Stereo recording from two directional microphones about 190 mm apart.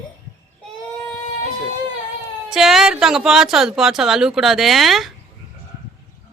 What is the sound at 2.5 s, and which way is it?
Speech, centre (ahead or behind).